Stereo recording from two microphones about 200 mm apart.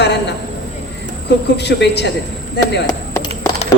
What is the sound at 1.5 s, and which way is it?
A woman's voice, 60° left (ahead or behind).